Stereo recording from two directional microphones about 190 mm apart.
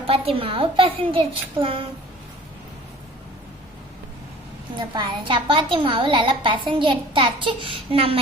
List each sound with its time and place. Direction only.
0.1 s a woman's voice: 30° right (ahead or behind)
4.8 s a woman's voice: 25° right (ahead or behind)